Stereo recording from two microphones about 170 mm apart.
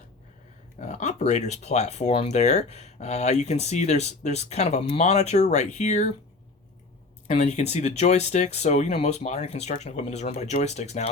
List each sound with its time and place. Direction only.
0.8 s speech: 45° left (ahead or behind)
7.3 s speech: 40° left (ahead or behind)